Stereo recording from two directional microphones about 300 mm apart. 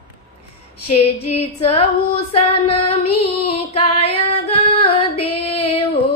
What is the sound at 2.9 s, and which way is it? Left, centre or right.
Child singing, centre.